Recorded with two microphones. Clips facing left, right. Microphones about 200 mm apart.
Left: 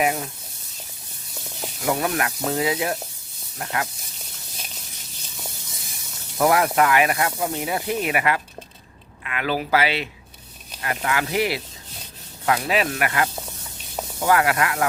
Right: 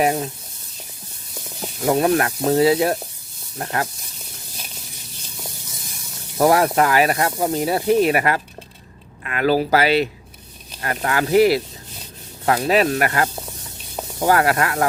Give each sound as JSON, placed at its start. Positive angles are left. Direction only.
{"t": 0.0, "sound": "speech", "side_deg": -35}
{"t": 1.8, "sound": "speech", "side_deg": -30}
{"t": 6.4, "sound": "speech", "side_deg": -35}